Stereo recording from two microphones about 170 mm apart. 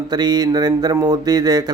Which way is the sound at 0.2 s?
25° right (ahead or behind).